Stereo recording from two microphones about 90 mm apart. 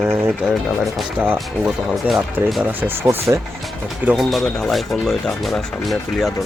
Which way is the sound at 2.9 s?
30° right (ahead or behind).